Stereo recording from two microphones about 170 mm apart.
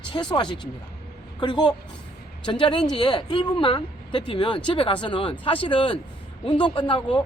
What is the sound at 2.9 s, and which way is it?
Speech, 30° left (ahead or behind).